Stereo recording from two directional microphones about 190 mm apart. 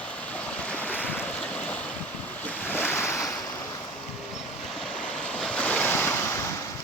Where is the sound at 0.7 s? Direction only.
10° left (ahead or behind).